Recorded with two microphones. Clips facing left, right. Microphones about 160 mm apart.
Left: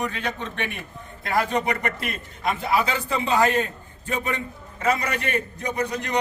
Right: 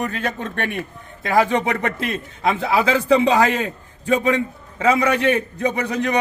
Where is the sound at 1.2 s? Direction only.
90° right.